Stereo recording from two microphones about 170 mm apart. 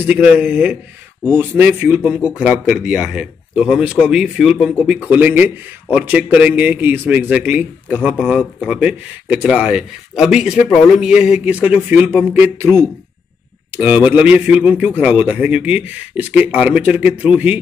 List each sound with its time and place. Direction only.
0.0 s a man's voice: 5° right (ahead or behind)